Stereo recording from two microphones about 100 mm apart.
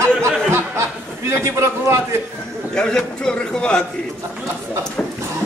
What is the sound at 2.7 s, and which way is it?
Speech, 10° left (ahead or behind).